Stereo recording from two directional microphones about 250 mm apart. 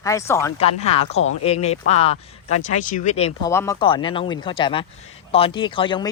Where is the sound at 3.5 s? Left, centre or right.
Centre.